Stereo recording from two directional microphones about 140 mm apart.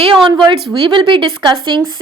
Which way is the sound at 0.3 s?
35° right (ahead or behind).